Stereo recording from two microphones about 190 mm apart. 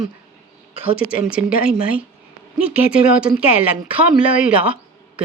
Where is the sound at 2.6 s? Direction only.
5° right (ahead or behind).